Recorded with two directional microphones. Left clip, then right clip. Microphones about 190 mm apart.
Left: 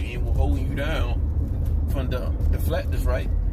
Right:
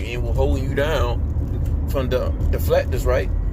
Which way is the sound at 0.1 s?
40° right (ahead or behind).